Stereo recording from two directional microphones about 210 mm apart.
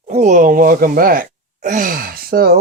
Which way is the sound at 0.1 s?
35° right (ahead or behind).